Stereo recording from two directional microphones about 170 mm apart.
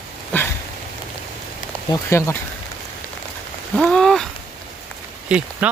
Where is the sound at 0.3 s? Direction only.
10° left (ahead or behind).